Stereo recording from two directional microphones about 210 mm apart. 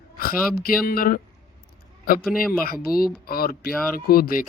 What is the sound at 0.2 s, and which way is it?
Speech, 45° left (ahead or behind).